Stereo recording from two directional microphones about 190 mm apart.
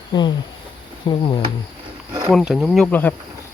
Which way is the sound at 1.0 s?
25° left (ahead or behind).